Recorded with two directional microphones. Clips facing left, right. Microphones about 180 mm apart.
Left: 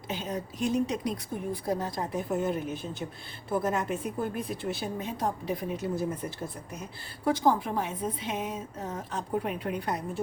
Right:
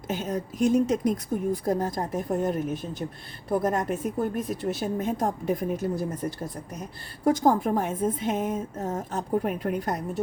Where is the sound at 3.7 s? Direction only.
45° right (ahead or behind).